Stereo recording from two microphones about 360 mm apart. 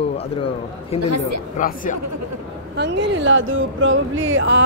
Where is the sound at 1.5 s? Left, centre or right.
Left.